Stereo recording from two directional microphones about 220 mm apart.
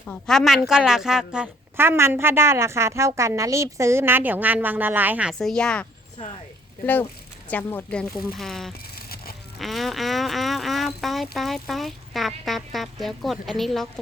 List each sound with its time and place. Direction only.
0.0 s a woman's voice: 5° left (ahead or behind)
7.4 s speech: 10° left (ahead or behind)
9.0 s music: 45° left (ahead or behind)
9.6 s speech: centre (ahead or behind)